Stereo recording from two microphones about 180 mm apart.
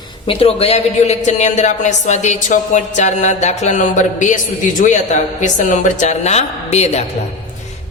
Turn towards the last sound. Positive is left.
turn(degrees=35)  # may be behind; listen again after turning